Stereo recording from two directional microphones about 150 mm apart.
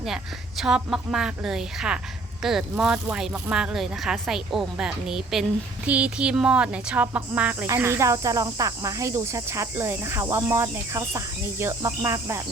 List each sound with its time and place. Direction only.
0.0 s speech: centre (ahead or behind); by 12.4 s 20° right (ahead or behind)